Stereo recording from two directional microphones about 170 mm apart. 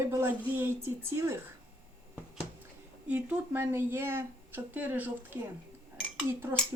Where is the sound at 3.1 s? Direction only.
10° right (ahead or behind).